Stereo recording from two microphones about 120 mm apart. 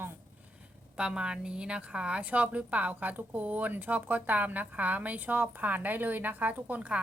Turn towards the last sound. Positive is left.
turn(degrees=-10)  # may be behind; listen again after turning